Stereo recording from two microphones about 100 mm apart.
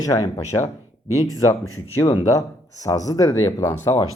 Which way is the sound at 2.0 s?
30° left (ahead or behind).